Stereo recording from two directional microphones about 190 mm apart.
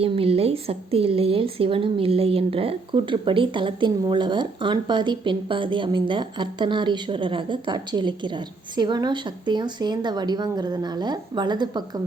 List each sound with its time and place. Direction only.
0.0 s a woman's voice: 30° right (ahead or behind)